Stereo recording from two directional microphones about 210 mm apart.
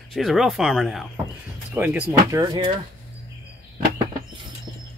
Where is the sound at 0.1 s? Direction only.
Centre (ahead or behind); by 2.6 s 15° right (ahead or behind).